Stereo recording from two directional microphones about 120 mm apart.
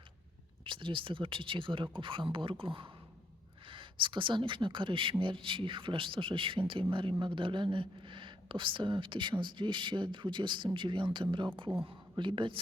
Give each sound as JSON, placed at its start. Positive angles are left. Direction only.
{"t": 0.6, "sound": "speech", "side_deg": -45}